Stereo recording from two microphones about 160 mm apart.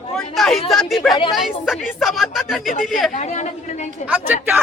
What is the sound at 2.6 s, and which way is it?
A woman's voice, 55° left (ahead or behind).